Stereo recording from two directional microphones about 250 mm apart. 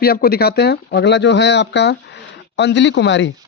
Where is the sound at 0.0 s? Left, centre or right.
Left.